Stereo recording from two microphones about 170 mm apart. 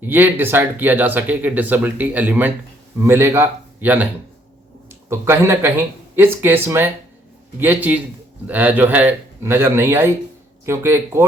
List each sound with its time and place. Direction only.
0.1 s speech: 10° right (ahead or behind)